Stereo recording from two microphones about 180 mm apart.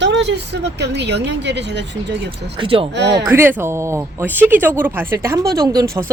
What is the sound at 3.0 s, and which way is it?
Speech, 75° right (ahead or behind).